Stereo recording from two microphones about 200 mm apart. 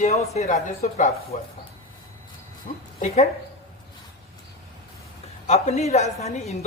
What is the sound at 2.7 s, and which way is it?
Speech, 40° left (ahead or behind).